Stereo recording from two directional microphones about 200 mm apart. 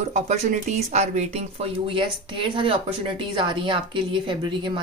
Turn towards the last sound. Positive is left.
turn(degrees=-25)  # may be behind; listen again after turning